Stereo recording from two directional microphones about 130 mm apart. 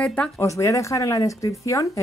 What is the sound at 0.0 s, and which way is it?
Speech, 10° left (ahead or behind).